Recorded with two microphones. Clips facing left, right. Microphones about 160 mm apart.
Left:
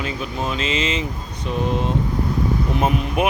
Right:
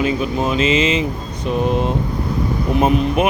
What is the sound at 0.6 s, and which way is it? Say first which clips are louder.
Speech: right 8 dB; 5° right (ahead or behind).